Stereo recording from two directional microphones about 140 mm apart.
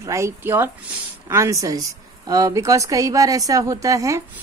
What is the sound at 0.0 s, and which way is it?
A woman's voice, 20° right (ahead or behind).